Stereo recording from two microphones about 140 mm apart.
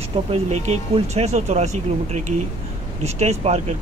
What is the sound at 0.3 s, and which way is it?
Speech, 50° right (ahead or behind).